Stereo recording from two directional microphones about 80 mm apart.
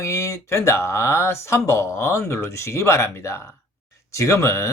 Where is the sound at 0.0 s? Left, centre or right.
Left.